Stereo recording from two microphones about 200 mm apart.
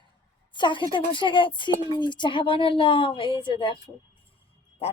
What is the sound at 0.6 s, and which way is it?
A woman's voice, 25° left (ahead or behind).